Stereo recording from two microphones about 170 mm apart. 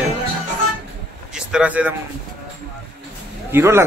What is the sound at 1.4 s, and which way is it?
Speech, 5° right (ahead or behind).